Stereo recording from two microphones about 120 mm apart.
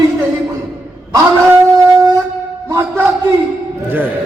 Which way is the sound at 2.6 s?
20° right (ahead or behind).